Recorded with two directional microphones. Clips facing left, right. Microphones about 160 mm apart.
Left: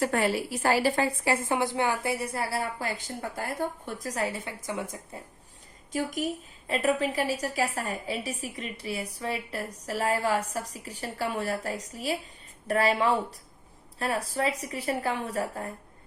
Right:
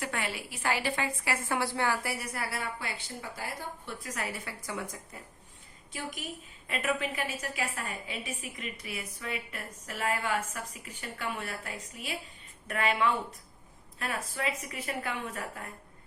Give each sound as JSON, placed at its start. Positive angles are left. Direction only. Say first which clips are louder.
{"t": 0.0, "sound": "a woman's voice", "louder": "left 10 dB", "side_deg": 40}
{"t": 5.9, "sound": "a woman's voice", "louder": "left 10 dB", "side_deg": 45}